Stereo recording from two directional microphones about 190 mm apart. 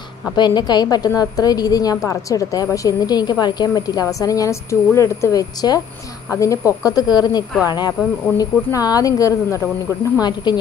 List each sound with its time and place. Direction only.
0.4 s a woman's voice: 20° left (ahead or behind)